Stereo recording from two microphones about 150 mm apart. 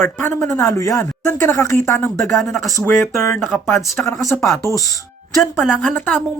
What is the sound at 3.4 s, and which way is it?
Speech, centre (ahead or behind).